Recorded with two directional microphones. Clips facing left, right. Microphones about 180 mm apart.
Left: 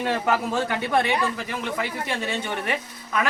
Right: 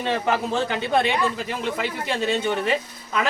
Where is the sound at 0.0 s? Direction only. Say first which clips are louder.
Even; 25° right (ahead or behind).